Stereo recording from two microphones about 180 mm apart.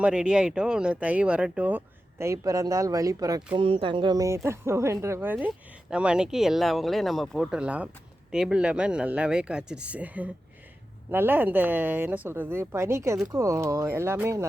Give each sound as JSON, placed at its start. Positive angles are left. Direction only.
{"t": 0.0, "sound": "speech", "side_deg": -5}